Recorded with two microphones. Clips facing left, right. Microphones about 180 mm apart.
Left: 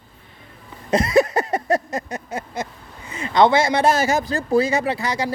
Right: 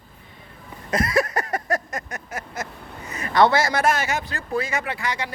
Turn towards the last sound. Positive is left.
turn(degrees=35)  # may be behind; listen again after turning